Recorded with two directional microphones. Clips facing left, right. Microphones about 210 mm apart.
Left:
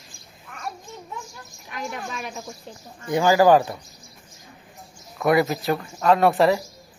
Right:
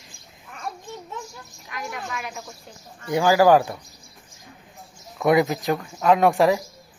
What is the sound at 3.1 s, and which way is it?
Speech, 10° right (ahead or behind).